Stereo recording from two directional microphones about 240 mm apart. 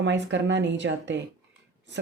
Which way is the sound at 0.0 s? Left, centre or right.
Right.